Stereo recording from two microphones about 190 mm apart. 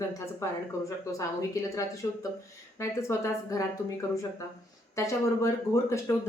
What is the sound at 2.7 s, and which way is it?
Speech, 15° left (ahead or behind).